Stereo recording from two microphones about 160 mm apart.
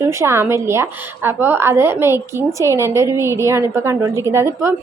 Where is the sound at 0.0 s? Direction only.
15° right (ahead or behind).